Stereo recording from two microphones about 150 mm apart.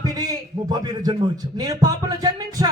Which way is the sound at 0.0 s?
25° right (ahead or behind).